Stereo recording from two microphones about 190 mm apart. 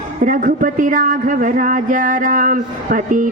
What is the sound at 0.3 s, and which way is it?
Speech, 45° right (ahead or behind).